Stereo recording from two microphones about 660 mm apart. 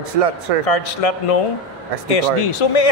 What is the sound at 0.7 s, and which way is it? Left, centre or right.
A man's voice, left.